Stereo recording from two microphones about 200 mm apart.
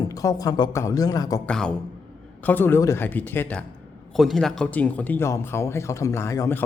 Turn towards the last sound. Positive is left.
turn(degrees=15)  # may be behind; listen again after turning